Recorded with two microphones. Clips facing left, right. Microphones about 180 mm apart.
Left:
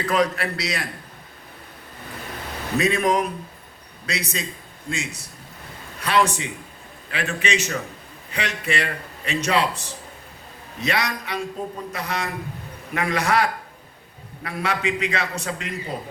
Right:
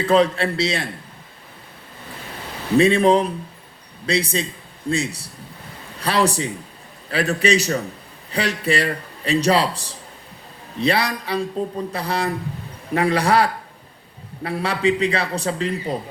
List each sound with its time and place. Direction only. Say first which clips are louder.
0.0 s a man's voice: right 5 dB; 30° right (ahead or behind)
2.7 s a man's voice: right 6 dB; 30° right (ahead or behind)